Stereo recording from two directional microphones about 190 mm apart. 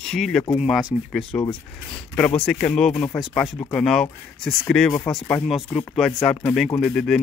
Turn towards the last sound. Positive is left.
turn(degrees=5)  # may be behind; listen again after turning